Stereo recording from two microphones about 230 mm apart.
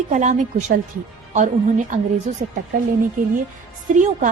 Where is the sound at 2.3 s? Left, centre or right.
Right.